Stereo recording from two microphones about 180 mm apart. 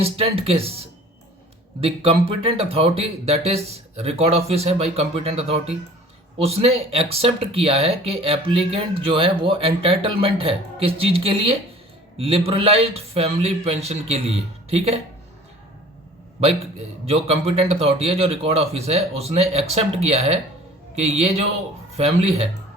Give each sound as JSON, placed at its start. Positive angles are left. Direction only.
{"t": 0.0, "sound": "a man's voice", "side_deg": -35}
{"t": 17.1, "sound": "speech", "side_deg": -35}